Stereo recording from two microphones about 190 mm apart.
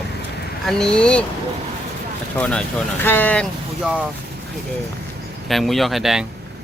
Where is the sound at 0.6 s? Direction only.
Centre (ahead or behind).